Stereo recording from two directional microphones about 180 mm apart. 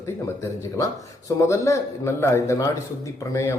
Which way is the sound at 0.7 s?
15° left (ahead or behind).